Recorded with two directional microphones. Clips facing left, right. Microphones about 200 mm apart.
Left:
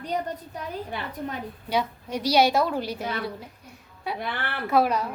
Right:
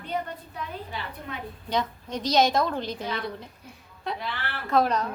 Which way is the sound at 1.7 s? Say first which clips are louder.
Left 2 dB; 10° left (ahead or behind).